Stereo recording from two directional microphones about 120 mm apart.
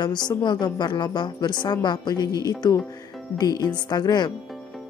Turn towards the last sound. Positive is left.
turn(degrees=35)  # may be behind; listen again after turning